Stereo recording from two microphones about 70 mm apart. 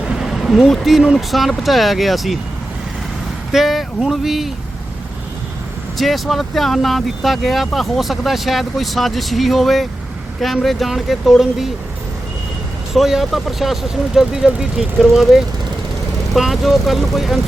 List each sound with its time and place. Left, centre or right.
0.2 s speech: centre
3.5 s speech: centre
6.0 s speech: centre
12.9 s speech: centre